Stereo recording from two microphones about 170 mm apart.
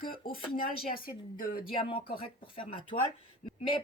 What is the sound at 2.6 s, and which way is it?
Speech, 30° left (ahead or behind).